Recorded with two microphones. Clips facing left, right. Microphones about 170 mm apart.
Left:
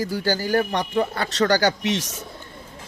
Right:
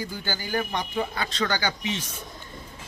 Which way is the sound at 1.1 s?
60° left (ahead or behind).